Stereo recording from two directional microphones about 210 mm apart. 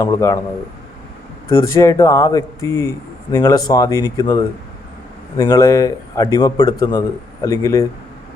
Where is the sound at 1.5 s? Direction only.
15° left (ahead or behind).